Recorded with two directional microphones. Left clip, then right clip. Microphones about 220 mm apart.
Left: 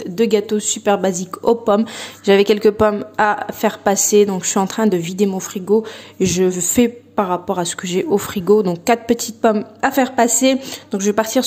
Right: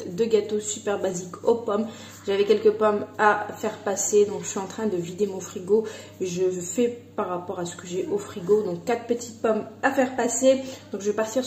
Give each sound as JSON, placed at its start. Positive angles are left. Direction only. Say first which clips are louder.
{"t": 0.2, "sound": "a woman's voice", "louder": "left 6 dB", "side_deg": 45}